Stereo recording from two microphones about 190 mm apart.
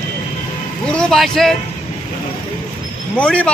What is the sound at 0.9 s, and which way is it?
Speech, 5° left (ahead or behind).